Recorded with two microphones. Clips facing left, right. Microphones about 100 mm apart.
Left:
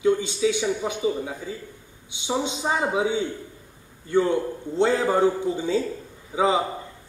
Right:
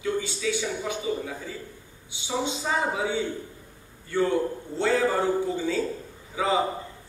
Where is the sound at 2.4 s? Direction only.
20° left (ahead or behind).